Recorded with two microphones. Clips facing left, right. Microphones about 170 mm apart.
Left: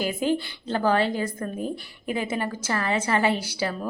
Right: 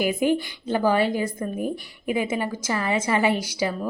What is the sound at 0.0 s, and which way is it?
A woman's voice, 15° right (ahead or behind).